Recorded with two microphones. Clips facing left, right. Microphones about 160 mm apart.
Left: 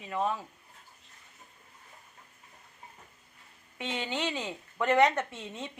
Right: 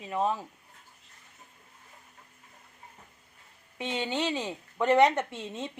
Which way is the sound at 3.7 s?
25° right (ahead or behind).